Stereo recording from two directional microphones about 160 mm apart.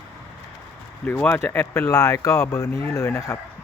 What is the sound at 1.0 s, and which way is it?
Speech, 10° left (ahead or behind).